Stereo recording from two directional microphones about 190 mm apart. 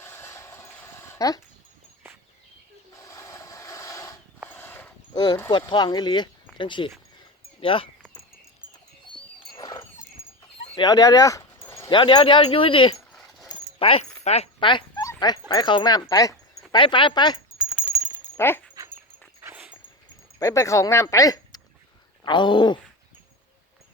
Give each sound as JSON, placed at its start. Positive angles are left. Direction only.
{"t": 0.0, "sound": "dog", "side_deg": 10}
{"t": 2.9, "sound": "rub", "side_deg": 15}
{"t": 4.4, "sound": "a sound", "side_deg": 10}
{"t": 5.1, "sound": "speech", "side_deg": 20}
{"t": 9.5, "sound": "a sound", "side_deg": 20}
{"t": 11.9, "sound": "speech", "side_deg": 25}
{"t": 13.7, "sound": "dog", "side_deg": 30}
{"t": 15.2, "sound": "speech", "side_deg": 20}
{"t": 18.3, "sound": "speech", "side_deg": 10}
{"t": 19.4, "sound": "dog", "side_deg": -10}
{"t": 20.4, "sound": "speech", "side_deg": 15}